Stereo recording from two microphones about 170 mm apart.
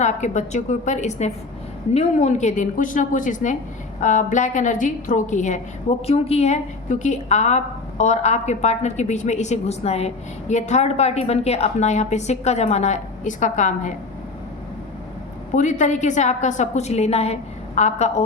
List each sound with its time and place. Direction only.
0.0 s a woman's voice: 45° left (ahead or behind)
15.5 s a woman's voice: 45° left (ahead or behind)